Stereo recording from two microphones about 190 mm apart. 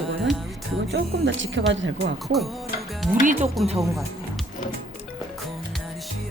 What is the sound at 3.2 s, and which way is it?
Speech, 40° right (ahead or behind).